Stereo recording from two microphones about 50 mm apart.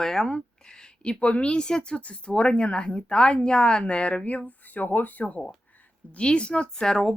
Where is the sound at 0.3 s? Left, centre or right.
Centre; by 5.2 s left.